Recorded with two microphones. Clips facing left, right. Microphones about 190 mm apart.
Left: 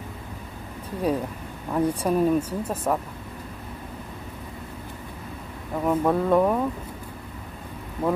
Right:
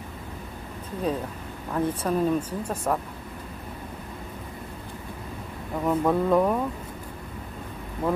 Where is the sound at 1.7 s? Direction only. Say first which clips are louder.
Left 3 dB; 10° left (ahead or behind).